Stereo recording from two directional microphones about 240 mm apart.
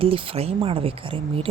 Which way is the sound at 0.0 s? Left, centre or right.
Right.